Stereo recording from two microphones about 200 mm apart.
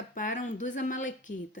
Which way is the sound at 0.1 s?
40° left (ahead or behind).